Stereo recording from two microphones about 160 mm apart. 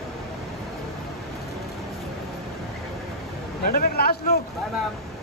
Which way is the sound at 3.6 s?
65° left (ahead or behind).